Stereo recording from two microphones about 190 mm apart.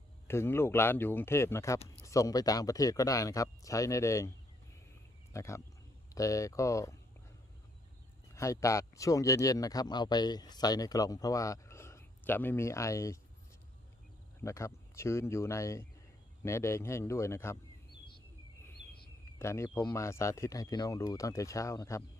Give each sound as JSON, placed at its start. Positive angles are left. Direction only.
{"t": 0.3, "sound": "speech", "side_deg": 10}
{"t": 5.3, "sound": "speech", "side_deg": 15}
{"t": 8.4, "sound": "speech", "side_deg": 15}
{"t": 14.4, "sound": "speech", "side_deg": 15}
{"t": 19.4, "sound": "speech", "side_deg": 15}